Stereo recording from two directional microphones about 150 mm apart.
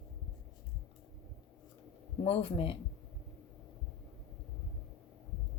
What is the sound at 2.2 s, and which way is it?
Speech, 40° left (ahead or behind).